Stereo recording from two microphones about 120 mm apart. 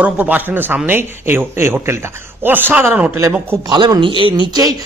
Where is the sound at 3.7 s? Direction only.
40° right (ahead or behind).